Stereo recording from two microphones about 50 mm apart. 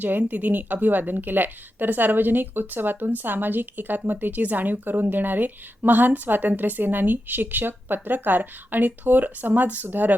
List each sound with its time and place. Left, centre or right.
0.0 s speech: right